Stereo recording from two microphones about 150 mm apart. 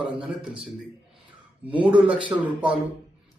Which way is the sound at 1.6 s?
10° right (ahead or behind).